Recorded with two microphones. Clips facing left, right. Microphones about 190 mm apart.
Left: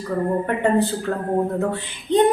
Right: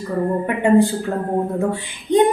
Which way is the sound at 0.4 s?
10° right (ahead or behind).